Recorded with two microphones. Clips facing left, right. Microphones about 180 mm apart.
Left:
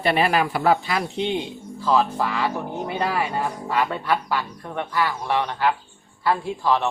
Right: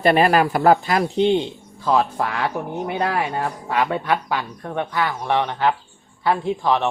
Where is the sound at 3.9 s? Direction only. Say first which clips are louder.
Right 2 dB; 15° right (ahead or behind).